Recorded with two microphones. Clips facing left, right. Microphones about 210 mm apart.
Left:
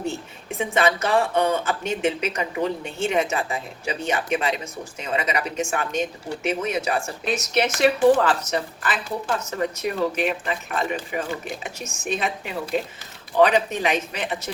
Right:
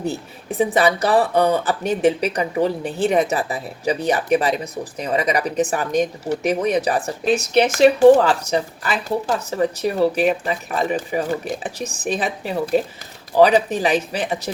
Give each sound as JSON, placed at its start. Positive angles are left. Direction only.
{"t": 0.1, "sound": "speech", "side_deg": -35}
{"t": 9.0, "sound": "speech", "side_deg": -40}